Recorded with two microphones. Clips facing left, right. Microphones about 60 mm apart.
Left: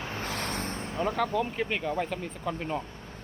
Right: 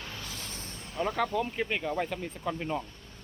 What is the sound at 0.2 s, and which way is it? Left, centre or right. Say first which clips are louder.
Vehicle: left 9 dB; left.